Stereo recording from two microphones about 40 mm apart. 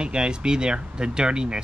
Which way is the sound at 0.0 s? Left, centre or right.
Right.